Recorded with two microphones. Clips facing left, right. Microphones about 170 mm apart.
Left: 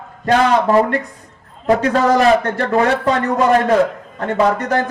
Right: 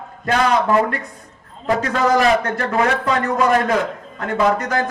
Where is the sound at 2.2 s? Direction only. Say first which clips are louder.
Left 3 dB; 30° left (ahead or behind).